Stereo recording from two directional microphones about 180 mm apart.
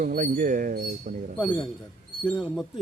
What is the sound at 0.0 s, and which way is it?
Speech, 50° right (ahead or behind).